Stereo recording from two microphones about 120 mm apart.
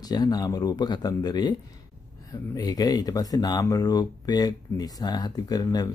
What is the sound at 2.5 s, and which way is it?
A man's voice, 30° left (ahead or behind).